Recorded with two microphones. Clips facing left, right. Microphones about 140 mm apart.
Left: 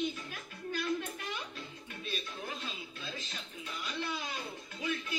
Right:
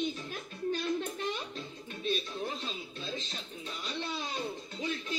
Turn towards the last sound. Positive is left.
turn(degrees=-25)  # may be behind; listen again after turning